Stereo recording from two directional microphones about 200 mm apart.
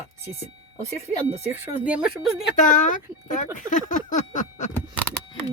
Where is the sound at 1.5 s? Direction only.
10° right (ahead or behind).